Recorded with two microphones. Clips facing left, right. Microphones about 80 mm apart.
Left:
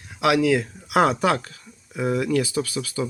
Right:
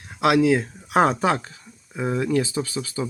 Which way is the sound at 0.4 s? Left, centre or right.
Right.